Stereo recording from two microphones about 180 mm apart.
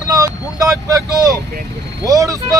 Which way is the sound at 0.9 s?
20° right (ahead or behind).